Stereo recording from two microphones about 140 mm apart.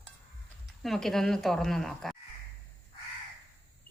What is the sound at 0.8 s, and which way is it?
A woman's voice, centre (ahead or behind).